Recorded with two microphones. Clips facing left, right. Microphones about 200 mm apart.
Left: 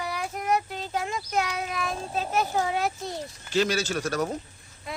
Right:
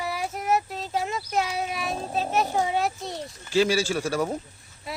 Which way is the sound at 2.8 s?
Centre (ahead or behind).